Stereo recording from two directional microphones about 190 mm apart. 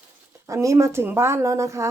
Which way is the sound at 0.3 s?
15° right (ahead or behind).